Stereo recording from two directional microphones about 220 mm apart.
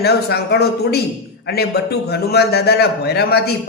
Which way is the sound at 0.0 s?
45° left (ahead or behind).